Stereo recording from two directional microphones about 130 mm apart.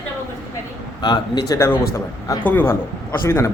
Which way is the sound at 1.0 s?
30° left (ahead or behind).